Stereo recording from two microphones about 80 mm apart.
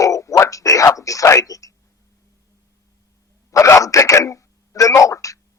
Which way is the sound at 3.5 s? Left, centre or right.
Left.